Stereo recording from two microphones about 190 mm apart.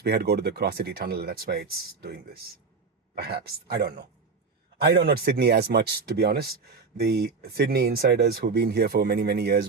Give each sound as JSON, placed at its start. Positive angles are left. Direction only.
{"t": 0.0, "sound": "speech", "side_deg": -55}